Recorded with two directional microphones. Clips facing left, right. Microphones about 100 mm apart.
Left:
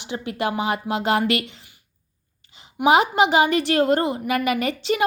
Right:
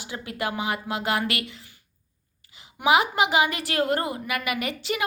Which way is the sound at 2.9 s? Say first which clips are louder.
Left 4 dB; 30° left (ahead or behind).